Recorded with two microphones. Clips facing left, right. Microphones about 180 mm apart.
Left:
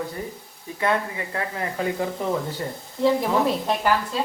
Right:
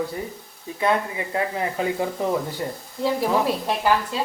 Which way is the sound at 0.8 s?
20° right (ahead or behind).